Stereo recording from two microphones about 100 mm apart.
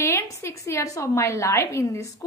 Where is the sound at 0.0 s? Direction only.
25° left (ahead or behind).